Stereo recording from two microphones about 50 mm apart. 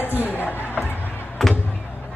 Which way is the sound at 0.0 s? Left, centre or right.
Left.